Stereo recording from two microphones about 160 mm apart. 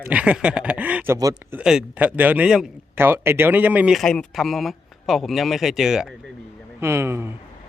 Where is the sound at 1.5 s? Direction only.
5° right (ahead or behind).